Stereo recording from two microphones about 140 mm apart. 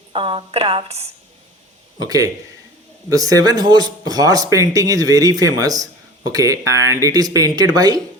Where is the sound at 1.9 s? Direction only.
25° right (ahead or behind).